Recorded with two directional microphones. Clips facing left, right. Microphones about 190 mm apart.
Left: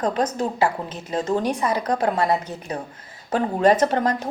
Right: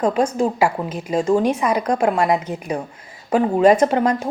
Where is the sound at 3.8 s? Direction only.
35° left (ahead or behind).